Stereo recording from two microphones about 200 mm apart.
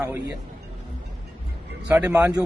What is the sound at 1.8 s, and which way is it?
Speech, 5° right (ahead or behind).